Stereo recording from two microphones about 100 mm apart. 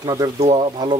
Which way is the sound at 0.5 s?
55° right (ahead or behind).